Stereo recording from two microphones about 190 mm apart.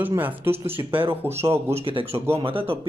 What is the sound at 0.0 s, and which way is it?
Speech, 10° right (ahead or behind).